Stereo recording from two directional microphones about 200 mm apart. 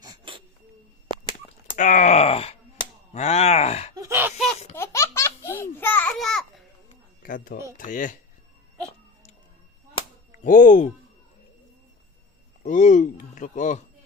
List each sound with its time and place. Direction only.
0.0 s a sound: 25° right (ahead or behind)
1.7 s groan: 40° left (ahead or behind)
3.9 s laughter: 15° right (ahead or behind)
4.7 s baby laughter: 15° left (ahead or behind)
7.2 s speech: 45° left (ahead or behind)
10.4 s speech: 40° left (ahead or behind)
12.6 s speech: 40° left (ahead or behind)